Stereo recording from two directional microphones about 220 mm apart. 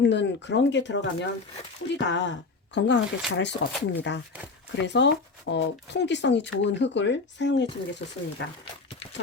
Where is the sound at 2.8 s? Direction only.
50° left (ahead or behind).